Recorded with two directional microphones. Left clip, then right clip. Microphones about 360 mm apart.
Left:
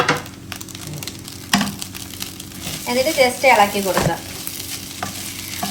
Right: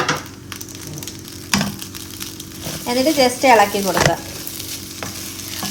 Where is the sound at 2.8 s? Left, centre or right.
Right.